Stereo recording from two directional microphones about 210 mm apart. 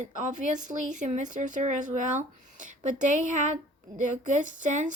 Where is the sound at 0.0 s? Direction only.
35° right (ahead or behind).